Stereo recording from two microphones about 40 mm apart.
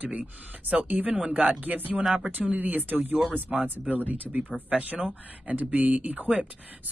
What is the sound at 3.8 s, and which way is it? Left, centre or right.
Speech, right.